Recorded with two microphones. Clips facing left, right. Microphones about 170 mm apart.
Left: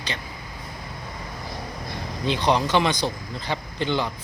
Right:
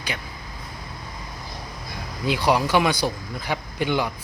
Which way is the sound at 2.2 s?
10° right (ahead or behind).